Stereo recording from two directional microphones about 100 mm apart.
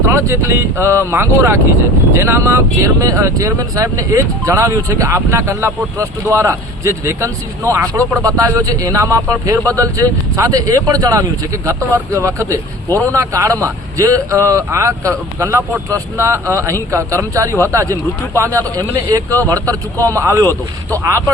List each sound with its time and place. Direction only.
0.0 s vehicle: 25° right (ahead or behind)
0.8 s speech: 25° right (ahead or behind)
19.4 s speech: 35° right (ahead or behind)